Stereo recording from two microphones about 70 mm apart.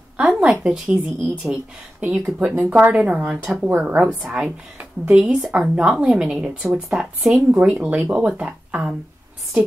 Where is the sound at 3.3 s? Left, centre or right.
Centre.